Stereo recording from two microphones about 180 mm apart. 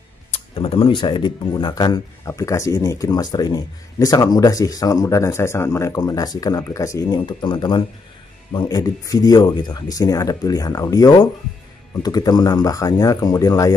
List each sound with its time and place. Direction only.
0.3 s speech: 30° left (ahead or behind)